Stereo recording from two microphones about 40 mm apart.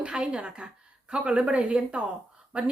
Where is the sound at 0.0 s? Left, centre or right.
Right.